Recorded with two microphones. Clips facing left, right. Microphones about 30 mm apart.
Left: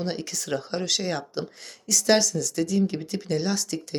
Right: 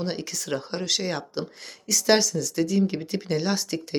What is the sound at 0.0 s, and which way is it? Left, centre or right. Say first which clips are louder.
Speech: even; centre.